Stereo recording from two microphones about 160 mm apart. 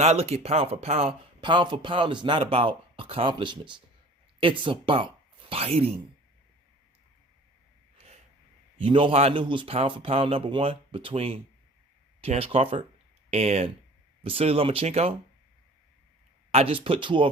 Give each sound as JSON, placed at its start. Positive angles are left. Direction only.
{"t": 0.0, "sound": "speech", "side_deg": -40}
{"t": 7.9, "sound": "a sound", "side_deg": -40}
{"t": 8.8, "sound": "speech", "side_deg": -30}
{"t": 16.5, "sound": "speech", "side_deg": -40}